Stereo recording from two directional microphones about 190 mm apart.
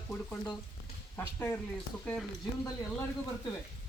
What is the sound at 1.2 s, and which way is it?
Speech, 10° left (ahead or behind).